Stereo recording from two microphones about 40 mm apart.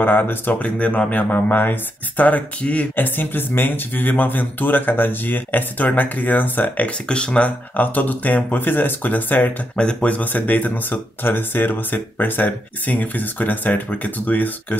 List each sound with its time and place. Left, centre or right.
0.0 s speech: left
0.7 s speech: left
3.0 s speech: left
6.6 s speech: left
7.7 s speech: left
9.8 s speech: left